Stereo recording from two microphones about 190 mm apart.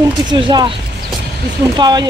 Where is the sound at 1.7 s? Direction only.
25° right (ahead or behind).